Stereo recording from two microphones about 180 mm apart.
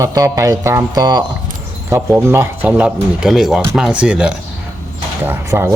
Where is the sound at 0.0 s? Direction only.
20° right (ahead or behind).